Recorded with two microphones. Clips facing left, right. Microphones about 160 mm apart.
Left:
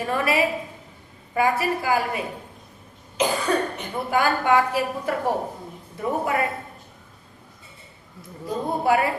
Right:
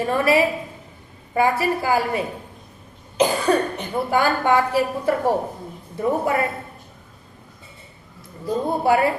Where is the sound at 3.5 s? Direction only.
35° right (ahead or behind).